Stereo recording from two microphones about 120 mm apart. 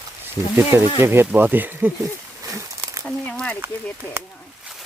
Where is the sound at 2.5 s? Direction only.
25° right (ahead or behind).